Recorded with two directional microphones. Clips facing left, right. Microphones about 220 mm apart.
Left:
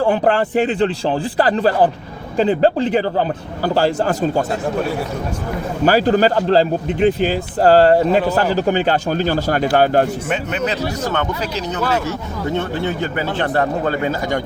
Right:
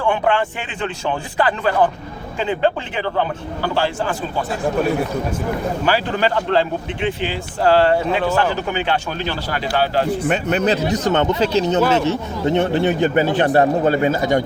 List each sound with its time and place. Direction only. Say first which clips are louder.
0.0 s a man's voice: left 3 dB; 40° left (ahead or behind)
5.8 s a man's voice: left 8 dB; 40° left (ahead or behind)
10.2 s speech: right 3 dB; 40° right (ahead or behind)
10.8 s speech: right 4 dB; 20° right (ahead or behind)